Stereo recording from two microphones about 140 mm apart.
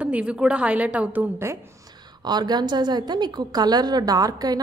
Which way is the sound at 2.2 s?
30° right (ahead or behind).